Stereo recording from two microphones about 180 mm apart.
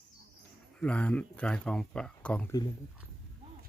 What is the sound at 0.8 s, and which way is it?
Speech, 5° left (ahead or behind).